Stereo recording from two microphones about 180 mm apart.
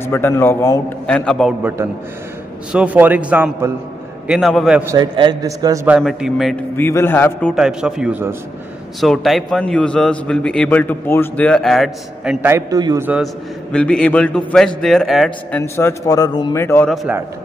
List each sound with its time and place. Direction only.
0.0 s a man's voice: 15° left (ahead or behind)
2.7 s a man's voice: 5° right (ahead or behind)
4.8 s a man's voice: 25° right (ahead or behind)
5.9 s a man's voice: centre (ahead or behind)
6.8 s a man's voice: 15° left (ahead or behind)
7.5 s a man's voice: 5° right (ahead or behind)
9.0 s a man's voice: centre (ahead or behind); by 13.1 s 20° right (ahead or behind)
13.1 s a man's voice: centre (ahead or behind)
16.9 s a man's voice: centre (ahead or behind)